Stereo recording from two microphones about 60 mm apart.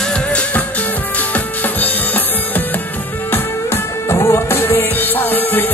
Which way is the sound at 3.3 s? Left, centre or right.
Left.